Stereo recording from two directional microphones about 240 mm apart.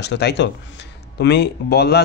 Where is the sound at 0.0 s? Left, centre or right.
Left.